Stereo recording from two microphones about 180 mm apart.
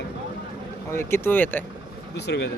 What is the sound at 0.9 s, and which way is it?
Speech, 15° left (ahead or behind).